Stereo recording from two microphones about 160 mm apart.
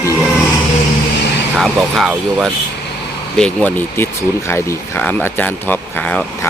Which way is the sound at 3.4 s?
10° left (ahead or behind).